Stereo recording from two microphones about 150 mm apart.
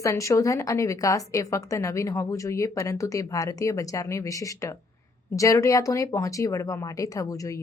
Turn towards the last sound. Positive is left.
turn(degrees=20)  # may be behind; listen again after turning